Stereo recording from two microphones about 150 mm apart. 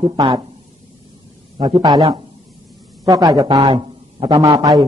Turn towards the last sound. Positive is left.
turn(degrees=-25)  # may be behind; listen again after turning